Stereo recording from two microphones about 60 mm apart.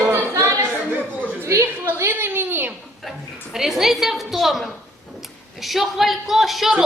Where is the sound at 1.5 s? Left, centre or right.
Right.